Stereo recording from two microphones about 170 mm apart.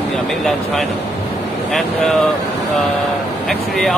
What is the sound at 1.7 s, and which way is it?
Speech, centre (ahead or behind).